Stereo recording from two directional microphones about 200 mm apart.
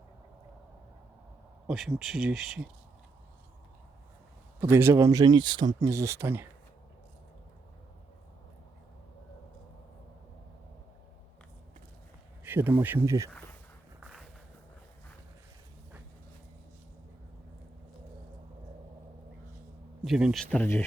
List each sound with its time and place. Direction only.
1.6 s speech: centre (ahead or behind)
4.6 s speech: 15° right (ahead or behind)
12.5 s speech: 10° right (ahead or behind)
14.0 s a sound: centre (ahead or behind)
20.1 s speech: centre (ahead or behind)